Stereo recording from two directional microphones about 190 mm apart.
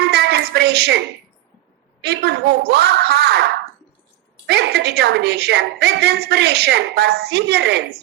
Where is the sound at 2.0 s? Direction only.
60° right (ahead or behind).